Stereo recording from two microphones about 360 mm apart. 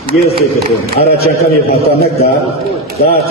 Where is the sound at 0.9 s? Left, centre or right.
Left.